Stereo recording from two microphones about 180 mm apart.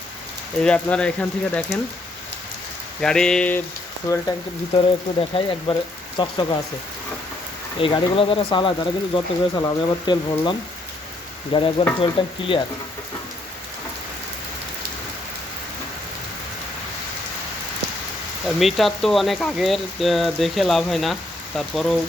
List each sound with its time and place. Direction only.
0.6 s speech: 5° left (ahead or behind)
3.0 s speech: 5° left (ahead or behind)
4.1 s speech: 20° left (ahead or behind)
4.7 s speech: 30° left (ahead or behind)
7.8 s speech: 30° left (ahead or behind)
11.5 s speech: 30° left (ahead or behind)
18.4 s speech: centre (ahead or behind)